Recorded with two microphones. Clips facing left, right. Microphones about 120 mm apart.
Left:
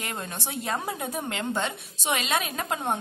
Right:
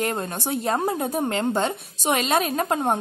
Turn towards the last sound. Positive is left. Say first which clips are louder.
# right 6 dB
turn(degrees=-45)  # may be behind; listen again after turning